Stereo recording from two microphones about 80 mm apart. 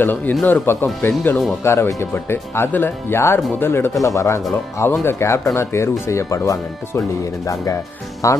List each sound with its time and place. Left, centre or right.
0.0 s speech: left
4.0 s speech: left